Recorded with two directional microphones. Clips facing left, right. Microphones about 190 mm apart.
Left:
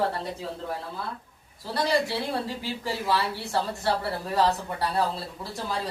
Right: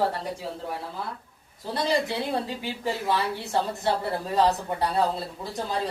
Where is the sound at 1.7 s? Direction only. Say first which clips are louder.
Even; 20° right (ahead or behind).